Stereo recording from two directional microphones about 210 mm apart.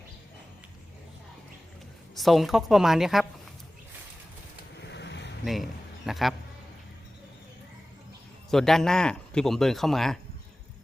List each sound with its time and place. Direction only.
2.1 s speech: centre (ahead or behind)
4.8 s a sound: 55° left (ahead or behind)
6.1 s speech: centre (ahead or behind)
8.4 s speech: centre (ahead or behind)